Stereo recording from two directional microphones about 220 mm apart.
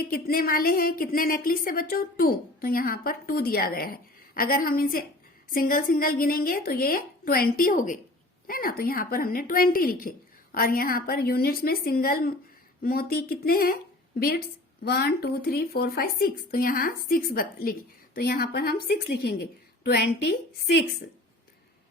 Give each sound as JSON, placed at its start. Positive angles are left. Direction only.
{"t": 0.0, "sound": "a woman's voice", "side_deg": 40}
{"t": 14.8, "sound": "speech", "side_deg": 45}